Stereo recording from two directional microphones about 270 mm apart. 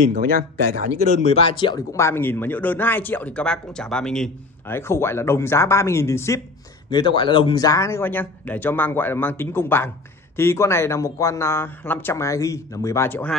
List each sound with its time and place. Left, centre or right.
0.1 s speech: right
1.1 s speech: left; by 13.4 s centre